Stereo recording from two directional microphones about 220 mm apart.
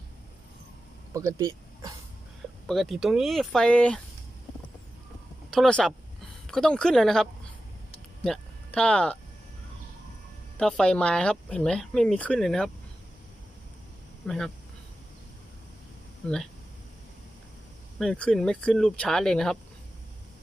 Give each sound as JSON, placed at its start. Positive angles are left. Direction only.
{"t": 1.1, "sound": "speech", "side_deg": -15}
{"t": 2.6, "sound": "speech", "side_deg": 0}
{"t": 5.5, "sound": "speech", "side_deg": 5}
{"t": 10.6, "sound": "speech", "side_deg": 5}
{"t": 14.2, "sound": "speech", "side_deg": 5}
{"t": 16.2, "sound": "speech", "side_deg": 5}
{"t": 17.9, "sound": "speech", "side_deg": 5}